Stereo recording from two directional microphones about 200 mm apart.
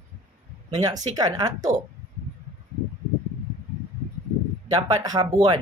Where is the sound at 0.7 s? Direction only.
20° right (ahead or behind).